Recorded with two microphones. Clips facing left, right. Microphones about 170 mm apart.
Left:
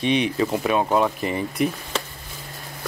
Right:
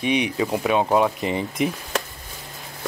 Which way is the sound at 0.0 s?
15° right (ahead or behind).